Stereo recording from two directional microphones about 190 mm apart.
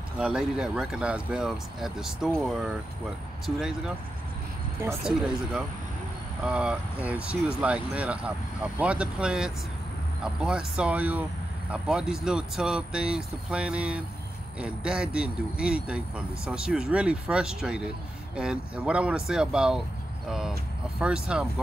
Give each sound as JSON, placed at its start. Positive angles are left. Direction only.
{"t": 0.2, "sound": "speech", "side_deg": -5}
{"t": 5.0, "sound": "speech", "side_deg": -5}